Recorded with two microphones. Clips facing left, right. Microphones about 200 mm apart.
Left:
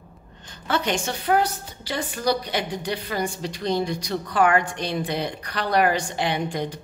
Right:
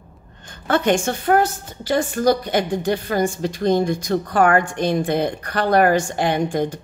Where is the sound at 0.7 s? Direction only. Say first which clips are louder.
Right 7 dB; 50° right (ahead or behind).